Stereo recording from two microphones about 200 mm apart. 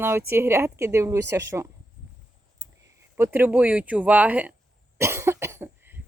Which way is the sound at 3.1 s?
10° right (ahead or behind).